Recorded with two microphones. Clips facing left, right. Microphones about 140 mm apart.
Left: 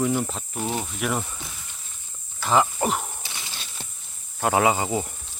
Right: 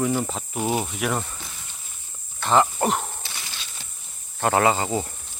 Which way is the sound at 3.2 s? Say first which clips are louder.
Even; 15° left (ahead or behind).